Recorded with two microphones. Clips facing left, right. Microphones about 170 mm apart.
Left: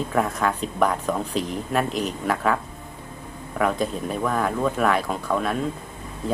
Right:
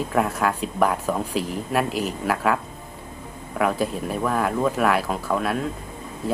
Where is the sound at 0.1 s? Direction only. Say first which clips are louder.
Right 1 dB; 5° right (ahead or behind).